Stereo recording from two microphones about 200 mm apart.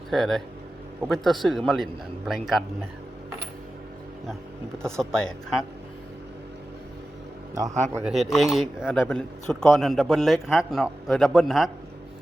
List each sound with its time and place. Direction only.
0.1 s a man's voice: centre (ahead or behind)
4.8 s a man's voice: 5° left (ahead or behind)
7.5 s a man's voice: 15° right (ahead or behind)
8.0 s a man's voice: centre (ahead or behind)